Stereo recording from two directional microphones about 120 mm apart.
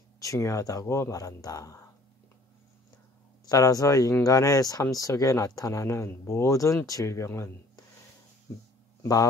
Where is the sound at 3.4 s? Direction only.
30° left (ahead or behind).